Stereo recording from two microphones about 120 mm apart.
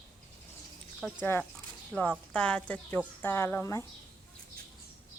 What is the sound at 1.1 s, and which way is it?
Speech, 20° left (ahead or behind).